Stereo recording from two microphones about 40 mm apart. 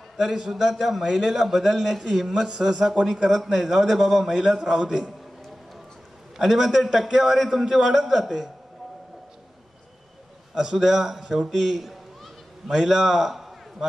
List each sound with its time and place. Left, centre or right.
0.2 s a man's voice: centre
4.3 s a man's voice: centre
6.3 s a man's voice: centre
10.5 s a man's voice: centre